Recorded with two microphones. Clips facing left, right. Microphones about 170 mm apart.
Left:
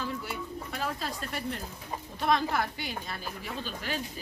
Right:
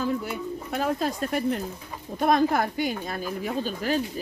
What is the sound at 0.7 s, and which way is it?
A woman's voice, 50° right (ahead or behind).